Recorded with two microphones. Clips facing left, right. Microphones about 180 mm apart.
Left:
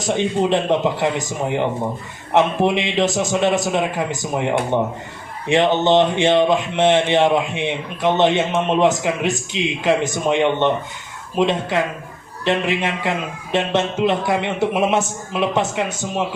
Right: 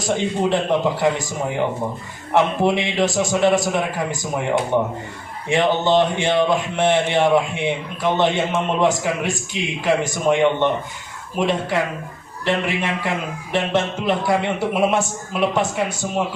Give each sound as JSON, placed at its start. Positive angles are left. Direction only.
{"t": 0.5, "sound": "speech", "side_deg": 20}